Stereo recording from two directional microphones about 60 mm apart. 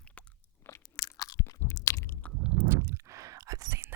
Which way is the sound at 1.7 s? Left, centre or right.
Left.